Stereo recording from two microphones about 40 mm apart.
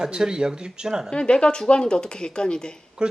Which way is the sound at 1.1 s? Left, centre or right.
Left.